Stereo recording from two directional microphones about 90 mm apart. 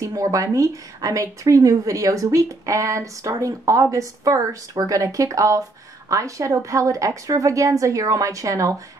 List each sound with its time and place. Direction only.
0.0 s a woman's voice: 40° right (ahead or behind)